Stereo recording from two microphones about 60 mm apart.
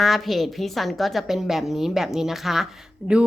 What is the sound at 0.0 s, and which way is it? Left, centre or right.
A woman's voice, centre.